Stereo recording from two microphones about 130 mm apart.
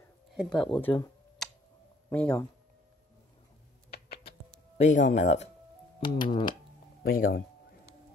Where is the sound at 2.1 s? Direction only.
10° left (ahead or behind).